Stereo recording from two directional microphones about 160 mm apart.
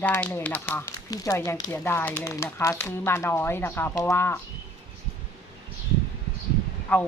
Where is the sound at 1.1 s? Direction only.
20° left (ahead or behind).